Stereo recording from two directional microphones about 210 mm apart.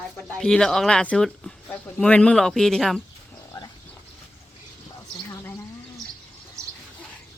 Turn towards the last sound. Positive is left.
turn(degrees=-15)  # may be behind; listen again after turning